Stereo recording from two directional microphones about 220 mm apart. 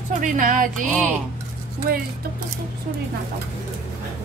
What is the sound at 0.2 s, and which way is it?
Music, 35° right (ahead or behind).